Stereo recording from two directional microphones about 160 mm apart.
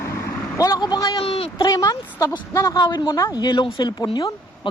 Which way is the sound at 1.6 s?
20° left (ahead or behind).